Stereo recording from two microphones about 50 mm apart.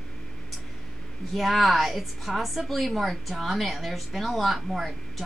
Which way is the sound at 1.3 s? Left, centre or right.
Centre.